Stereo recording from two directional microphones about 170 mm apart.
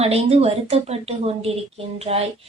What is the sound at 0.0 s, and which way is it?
Speech, 35° right (ahead or behind).